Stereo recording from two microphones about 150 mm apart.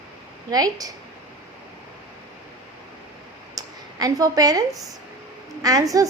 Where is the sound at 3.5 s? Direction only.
25° right (ahead or behind).